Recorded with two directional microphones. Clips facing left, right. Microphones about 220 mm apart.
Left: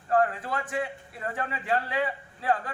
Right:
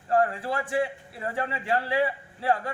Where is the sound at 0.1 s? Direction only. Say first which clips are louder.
Right 1 dB; 30° right (ahead or behind).